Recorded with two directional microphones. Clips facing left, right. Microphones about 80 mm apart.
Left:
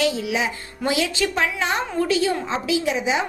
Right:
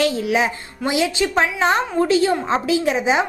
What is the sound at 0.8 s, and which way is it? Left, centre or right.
Speech, right.